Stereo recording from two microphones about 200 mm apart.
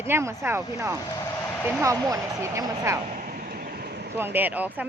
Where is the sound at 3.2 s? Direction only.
45° right (ahead or behind).